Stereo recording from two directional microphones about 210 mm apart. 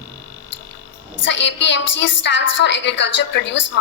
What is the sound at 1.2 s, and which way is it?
A woman's voice, 60° left (ahead or behind).